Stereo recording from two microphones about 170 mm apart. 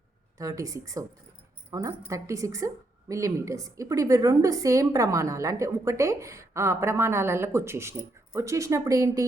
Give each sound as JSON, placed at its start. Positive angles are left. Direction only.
{"t": 0.3, "sound": "a woman's voice", "side_deg": -20}